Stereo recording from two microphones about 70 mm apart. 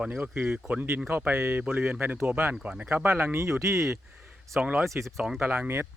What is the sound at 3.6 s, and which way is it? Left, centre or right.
Speech, right.